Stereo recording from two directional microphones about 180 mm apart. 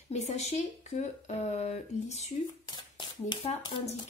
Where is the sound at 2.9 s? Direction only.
25° left (ahead or behind).